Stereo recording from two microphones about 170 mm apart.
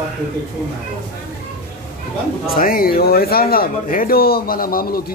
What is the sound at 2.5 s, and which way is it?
Speech, 60° left (ahead or behind).